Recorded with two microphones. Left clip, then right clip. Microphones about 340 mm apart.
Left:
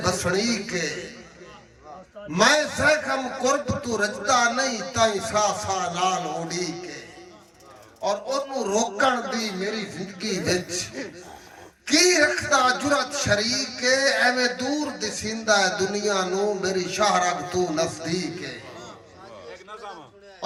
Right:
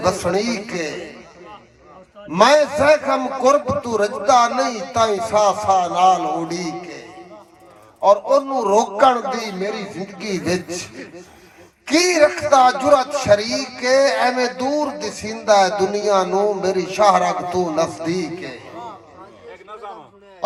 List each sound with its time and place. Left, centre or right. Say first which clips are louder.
0.0 s a man's voice: right 5 dB; centre
2.3 s a man's voice: right 7 dB; centre
8.0 s a man's voice: right 11 dB; centre
11.9 s a man's voice: right 4 dB; centre